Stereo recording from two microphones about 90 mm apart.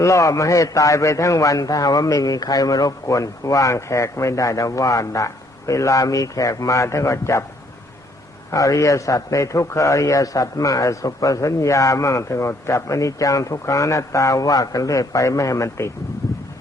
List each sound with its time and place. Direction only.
0.0 s a man's voice: 35° left (ahead or behind)
8.5 s a man's voice: 40° left (ahead or behind)